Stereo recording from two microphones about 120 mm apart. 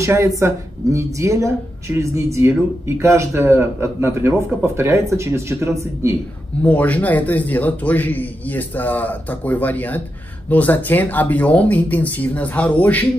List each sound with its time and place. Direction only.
0.0 s a man's voice: 25° right (ahead or behind)
6.6 s a man's voice: 10° left (ahead or behind)